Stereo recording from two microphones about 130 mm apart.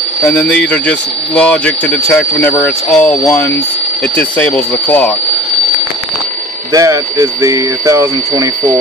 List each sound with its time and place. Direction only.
0.2 s speech: 10° left (ahead or behind)
6.7 s speech: 25° right (ahead or behind)